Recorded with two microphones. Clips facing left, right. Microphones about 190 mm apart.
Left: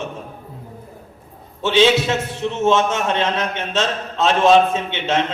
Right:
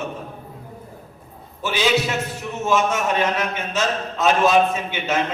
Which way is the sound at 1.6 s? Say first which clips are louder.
Left 5 dB; 25° left (ahead or behind).